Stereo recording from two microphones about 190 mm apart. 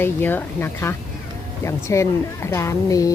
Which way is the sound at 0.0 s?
10° left (ahead or behind).